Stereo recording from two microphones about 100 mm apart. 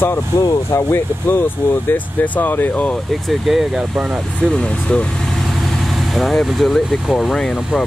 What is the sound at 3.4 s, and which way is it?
Speech, 5° right (ahead or behind).